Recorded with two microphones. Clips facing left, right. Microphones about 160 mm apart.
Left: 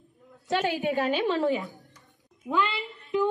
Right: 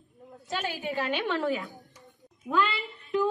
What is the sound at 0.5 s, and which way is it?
Speech, 65° left (ahead or behind).